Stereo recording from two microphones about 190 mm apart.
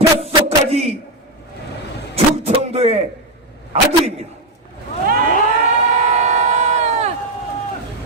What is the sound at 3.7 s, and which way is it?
Speech, 30° right (ahead or behind).